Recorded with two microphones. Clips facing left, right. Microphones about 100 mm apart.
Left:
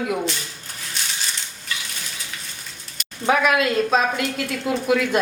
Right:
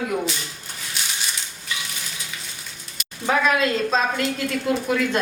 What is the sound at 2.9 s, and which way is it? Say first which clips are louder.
A woman's voice: left 2 dB; 5° left (ahead or behind).